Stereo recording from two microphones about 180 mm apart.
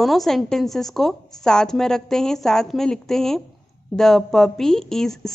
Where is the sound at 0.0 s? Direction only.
Centre (ahead or behind).